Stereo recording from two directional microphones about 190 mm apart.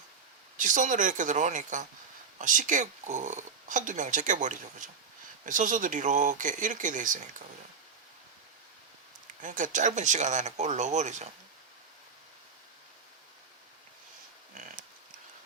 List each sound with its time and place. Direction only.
0.5 s speech: 40° right (ahead or behind)
9.4 s speech: 40° right (ahead or behind)
14.5 s pig: 40° right (ahead or behind)